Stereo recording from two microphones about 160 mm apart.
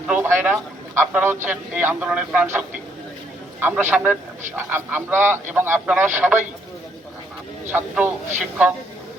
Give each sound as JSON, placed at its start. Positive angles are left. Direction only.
{"t": 0.1, "sound": "a man's voice", "side_deg": -10}
{"t": 7.7, "sound": "a man's voice", "side_deg": -10}